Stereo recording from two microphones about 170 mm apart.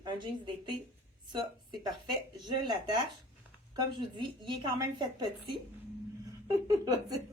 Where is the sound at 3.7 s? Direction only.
25° right (ahead or behind).